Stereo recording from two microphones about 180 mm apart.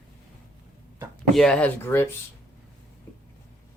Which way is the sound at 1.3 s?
5° left (ahead or behind).